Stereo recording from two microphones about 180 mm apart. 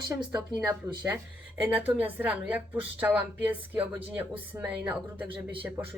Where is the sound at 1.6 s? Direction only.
10° right (ahead or behind).